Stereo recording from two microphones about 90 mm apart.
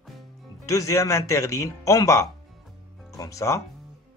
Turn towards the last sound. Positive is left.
turn(degrees=35)  # may be behind; listen again after turning